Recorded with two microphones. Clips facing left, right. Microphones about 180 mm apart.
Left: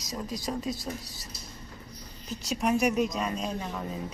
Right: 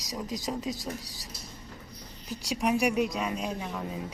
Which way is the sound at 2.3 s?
15° right (ahead or behind).